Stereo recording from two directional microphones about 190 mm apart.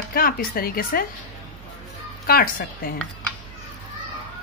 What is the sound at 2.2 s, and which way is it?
Speech, 50° left (ahead or behind).